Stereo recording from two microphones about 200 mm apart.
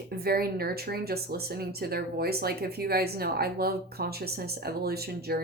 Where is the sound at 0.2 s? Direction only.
50° right (ahead or behind).